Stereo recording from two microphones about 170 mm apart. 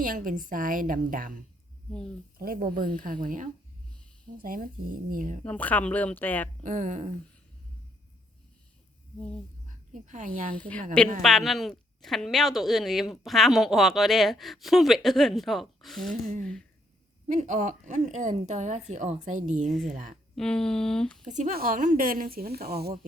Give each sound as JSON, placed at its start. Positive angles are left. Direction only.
{"t": 0.0, "sound": "a woman's voice", "side_deg": -55}
{"t": 1.9, "sound": "speech", "side_deg": 5}
{"t": 2.4, "sound": "a woman's voice", "side_deg": -55}
{"t": 5.5, "sound": "speech", "side_deg": 10}
{"t": 6.6, "sound": "a woman's voice", "side_deg": -50}
{"t": 9.6, "sound": "speech", "side_deg": -50}
{"t": 11.2, "sound": "speech", "side_deg": 0}
{"t": 17.2, "sound": "a woman's voice", "side_deg": -45}
{"t": 19.6, "sound": "speech", "side_deg": 0}
{"t": 19.9, "sound": "a woman's voice", "side_deg": -45}
{"t": 20.3, "sound": "speech", "side_deg": 5}
{"t": 21.2, "sound": "a woman's voice", "side_deg": -45}
{"t": 21.5, "sound": "speech", "side_deg": -55}